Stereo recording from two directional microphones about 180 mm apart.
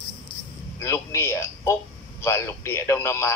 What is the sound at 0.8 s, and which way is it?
A man's voice, 15° left (ahead or behind).